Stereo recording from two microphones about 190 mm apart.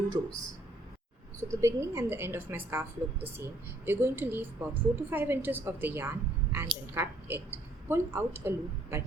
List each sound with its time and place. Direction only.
0.1 s speech: 25° right (ahead or behind)
1.4 s a woman's voice: 15° right (ahead or behind)